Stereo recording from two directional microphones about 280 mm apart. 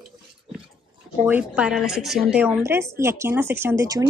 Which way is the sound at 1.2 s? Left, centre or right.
Centre.